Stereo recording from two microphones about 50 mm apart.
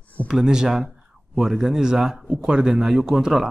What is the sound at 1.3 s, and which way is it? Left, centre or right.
A man's voice, centre.